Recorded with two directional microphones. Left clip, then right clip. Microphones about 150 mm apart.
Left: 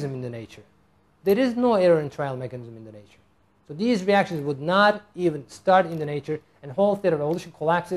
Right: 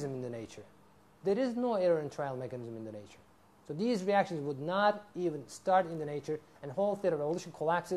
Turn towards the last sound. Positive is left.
turn(degrees=-25)  # may be behind; listen again after turning